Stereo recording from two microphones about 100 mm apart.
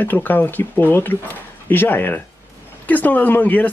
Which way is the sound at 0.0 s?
20° left (ahead or behind).